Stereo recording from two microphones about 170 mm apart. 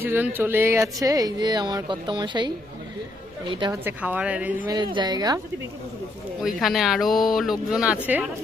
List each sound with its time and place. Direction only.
0.0 s speech: 15° right (ahead or behind)
3.5 s speech: 25° right (ahead or behind)
3.8 s speech: 10° right (ahead or behind)
4.7 s speech: 25° right (ahead or behind)
6.4 s speech: centre (ahead or behind)